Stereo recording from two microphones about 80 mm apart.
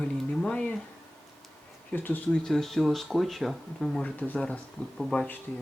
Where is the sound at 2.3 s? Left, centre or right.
Centre.